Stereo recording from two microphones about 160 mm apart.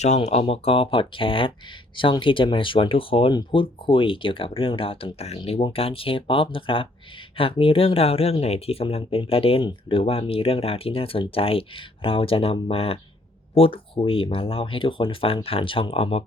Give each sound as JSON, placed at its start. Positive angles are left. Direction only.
{"t": 0.0, "sound": "speech", "side_deg": 45}